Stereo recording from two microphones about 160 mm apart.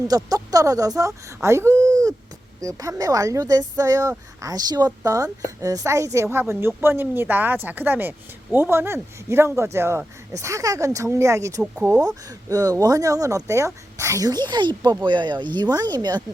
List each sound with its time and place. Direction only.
0.1 s speech: 25° right (ahead or behind)
6.2 s speech: 5° right (ahead or behind); by 16.2 s 25° right (ahead or behind)